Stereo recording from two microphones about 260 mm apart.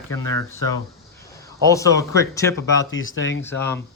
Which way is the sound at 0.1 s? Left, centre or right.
Centre.